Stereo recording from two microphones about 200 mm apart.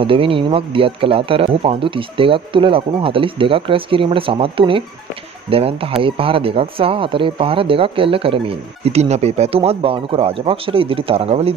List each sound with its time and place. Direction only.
0.0 s speech: 25° right (ahead or behind)